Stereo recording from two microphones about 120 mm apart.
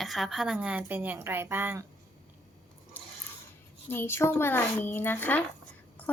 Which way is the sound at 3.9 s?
20° left (ahead or behind).